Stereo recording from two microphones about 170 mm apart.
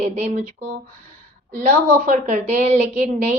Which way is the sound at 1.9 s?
50° right (ahead or behind).